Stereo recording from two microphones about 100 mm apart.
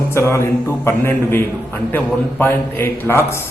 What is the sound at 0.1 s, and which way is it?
A man's voice, 25° left (ahead or behind).